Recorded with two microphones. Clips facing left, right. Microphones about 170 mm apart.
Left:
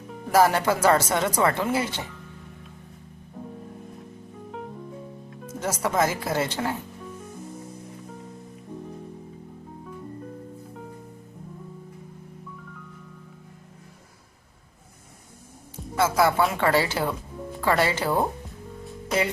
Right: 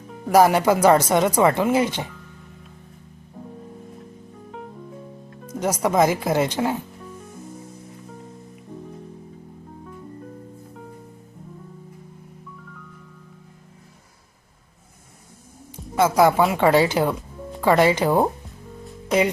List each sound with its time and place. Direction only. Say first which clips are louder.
0.3 s speech: right 4 dB; 15° right (ahead or behind)
4.5 s music: even; centre (ahead or behind)
5.5 s speech: right 5 dB; 15° right (ahead or behind)
16.0 s speech: right 4 dB; 15° right (ahead or behind)